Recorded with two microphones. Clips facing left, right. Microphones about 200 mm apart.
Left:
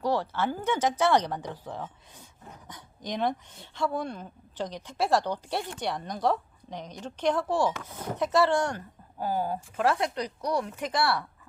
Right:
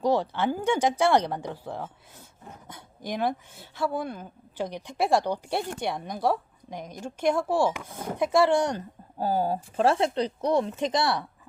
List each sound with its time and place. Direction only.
0.0 s a woman's voice: 15° right (ahead or behind)
9.1 s speech: 30° right (ahead or behind)